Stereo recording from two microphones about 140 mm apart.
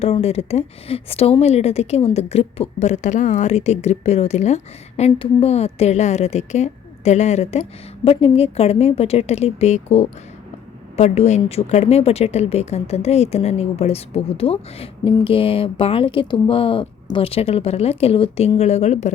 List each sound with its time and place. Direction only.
0.0 s speech: 45° left (ahead or behind)